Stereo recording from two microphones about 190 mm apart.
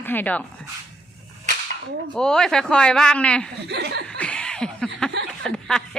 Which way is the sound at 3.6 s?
60° right (ahead or behind).